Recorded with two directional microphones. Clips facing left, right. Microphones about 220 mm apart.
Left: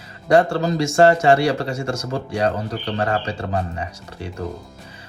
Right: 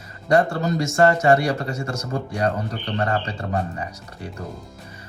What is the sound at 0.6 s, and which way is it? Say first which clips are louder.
Speech: left 3 dB; 30° left (ahead or behind).